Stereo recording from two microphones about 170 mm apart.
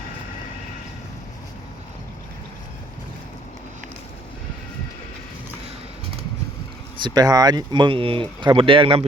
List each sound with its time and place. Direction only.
7.0 s speech: 25° right (ahead or behind)